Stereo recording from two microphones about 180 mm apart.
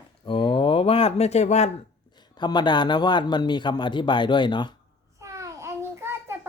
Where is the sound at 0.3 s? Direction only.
30° left (ahead or behind).